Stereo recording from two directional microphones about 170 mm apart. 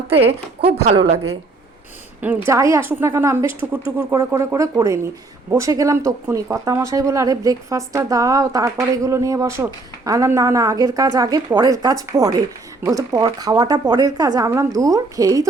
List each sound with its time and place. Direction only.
0.2 s a woman's voice: 35° right (ahead or behind)
2.5 s speech: 15° right (ahead or behind)